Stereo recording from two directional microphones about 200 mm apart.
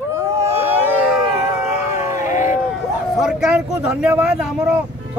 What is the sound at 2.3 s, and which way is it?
Run, 40° left (ahead or behind).